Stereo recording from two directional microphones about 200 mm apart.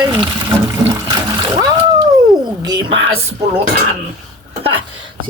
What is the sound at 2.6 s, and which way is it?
Speech, 20° right (ahead or behind).